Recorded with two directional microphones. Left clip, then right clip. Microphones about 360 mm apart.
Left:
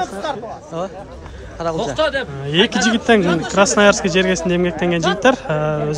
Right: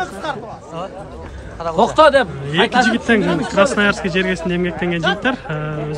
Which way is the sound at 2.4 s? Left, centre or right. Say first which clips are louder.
Right 1 dB; centre.